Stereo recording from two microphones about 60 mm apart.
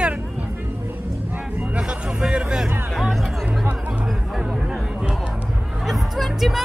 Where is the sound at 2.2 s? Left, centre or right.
Centre.